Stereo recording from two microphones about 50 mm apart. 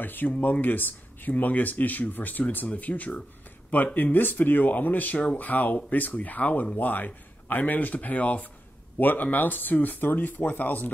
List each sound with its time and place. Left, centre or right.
0.0 s speech: left